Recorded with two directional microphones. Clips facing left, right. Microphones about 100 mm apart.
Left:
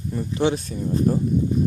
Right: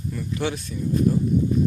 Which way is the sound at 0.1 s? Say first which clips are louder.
Left 6 dB; 30° left (ahead or behind).